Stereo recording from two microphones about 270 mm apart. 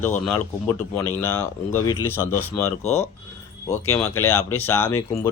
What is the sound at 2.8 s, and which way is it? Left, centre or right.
Speech, left.